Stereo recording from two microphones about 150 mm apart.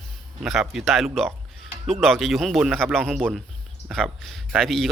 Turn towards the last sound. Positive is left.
turn(degrees=0)  # may be behind; listen again after turning